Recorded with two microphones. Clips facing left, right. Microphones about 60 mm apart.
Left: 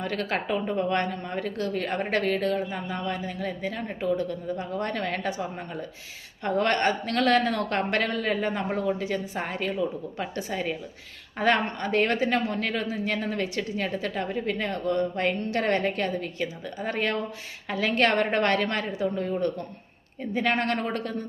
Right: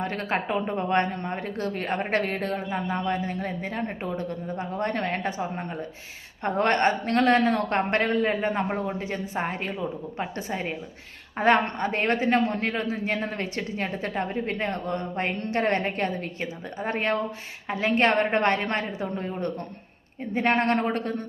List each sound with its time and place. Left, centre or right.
0.0 s a woman's voice: right